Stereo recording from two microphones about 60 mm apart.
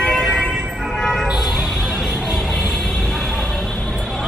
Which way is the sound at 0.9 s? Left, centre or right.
Centre.